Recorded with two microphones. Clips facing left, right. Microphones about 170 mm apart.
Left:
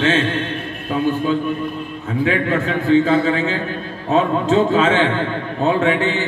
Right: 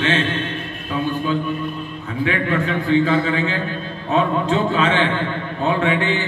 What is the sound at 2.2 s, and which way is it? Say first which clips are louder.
A man's voice: left 1 dB; 40° left (ahead or behind).